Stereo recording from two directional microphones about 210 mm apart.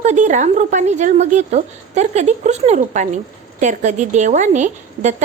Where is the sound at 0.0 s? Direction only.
35° right (ahead or behind).